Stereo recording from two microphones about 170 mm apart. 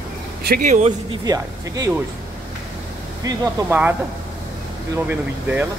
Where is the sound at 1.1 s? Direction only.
20° right (ahead or behind).